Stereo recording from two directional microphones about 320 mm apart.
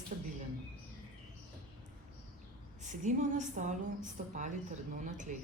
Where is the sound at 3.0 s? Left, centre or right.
Right.